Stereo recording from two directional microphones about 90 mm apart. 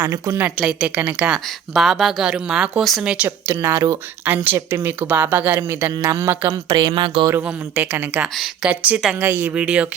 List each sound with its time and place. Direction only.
0.0 s a man's voice: 35° right (ahead or behind)
0.6 s a woman's voice: 10° right (ahead or behind)
3.2 s a woman's voice: 25° right (ahead or behind)
5.5 s a man's voice: 35° right (ahead or behind)
6.7 s speech: 45° right (ahead or behind)
7.3 s a woman's voice: 25° right (ahead or behind)